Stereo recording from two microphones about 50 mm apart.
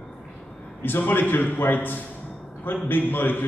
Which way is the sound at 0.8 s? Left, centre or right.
Left.